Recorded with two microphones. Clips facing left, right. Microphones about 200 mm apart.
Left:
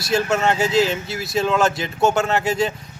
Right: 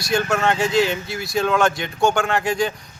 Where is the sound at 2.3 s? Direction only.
25° left (ahead or behind).